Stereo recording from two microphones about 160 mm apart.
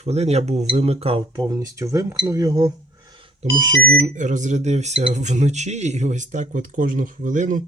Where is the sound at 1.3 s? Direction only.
25° right (ahead or behind).